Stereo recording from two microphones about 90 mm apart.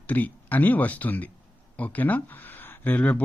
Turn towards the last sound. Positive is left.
turn(degrees=15)  # may be behind; listen again after turning